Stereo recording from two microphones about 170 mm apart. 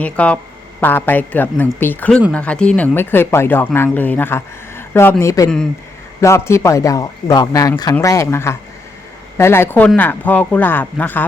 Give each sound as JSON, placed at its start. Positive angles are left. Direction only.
{"t": 0.0, "sound": "speech", "side_deg": 10}